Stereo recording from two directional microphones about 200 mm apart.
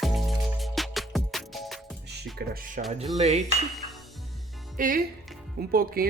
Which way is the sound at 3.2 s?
35° right (ahead or behind).